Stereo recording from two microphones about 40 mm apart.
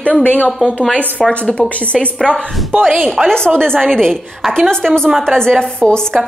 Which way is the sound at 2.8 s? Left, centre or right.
Centre.